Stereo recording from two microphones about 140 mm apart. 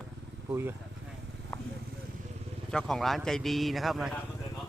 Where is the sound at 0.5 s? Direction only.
15° right (ahead or behind).